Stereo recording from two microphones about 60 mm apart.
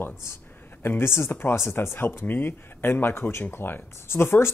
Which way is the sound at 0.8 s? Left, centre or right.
Left.